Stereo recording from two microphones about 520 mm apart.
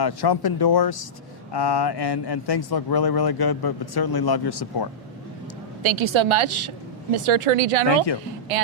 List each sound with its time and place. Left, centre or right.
0.0 s speech: left
5.8 s a woman's voice: right